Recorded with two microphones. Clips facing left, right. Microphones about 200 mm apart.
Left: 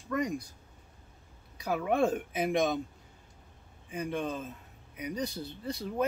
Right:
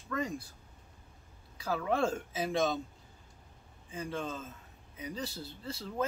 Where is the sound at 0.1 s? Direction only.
15° left (ahead or behind).